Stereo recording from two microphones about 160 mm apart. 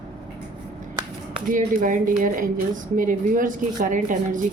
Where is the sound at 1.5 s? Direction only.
55° right (ahead or behind).